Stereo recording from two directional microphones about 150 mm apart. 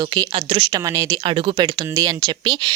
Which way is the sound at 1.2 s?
35° right (ahead or behind).